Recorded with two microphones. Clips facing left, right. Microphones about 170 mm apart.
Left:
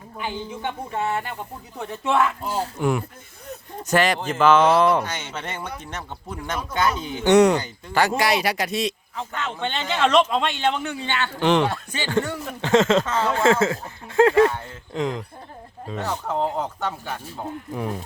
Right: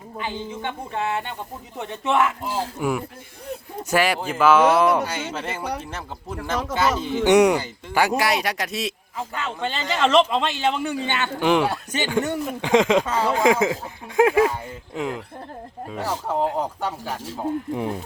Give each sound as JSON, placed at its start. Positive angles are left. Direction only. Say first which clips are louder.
{"t": 0.2, "sound": "speech", "louder": "even", "side_deg": 10}
{"t": 6.7, "sound": "speech", "louder": "even", "side_deg": -90}
{"t": 7.3, "sound": "speech", "louder": "left 1 dB", "side_deg": -15}
{"t": 11.0, "sound": "speech", "louder": "left 2 dB", "side_deg": -15}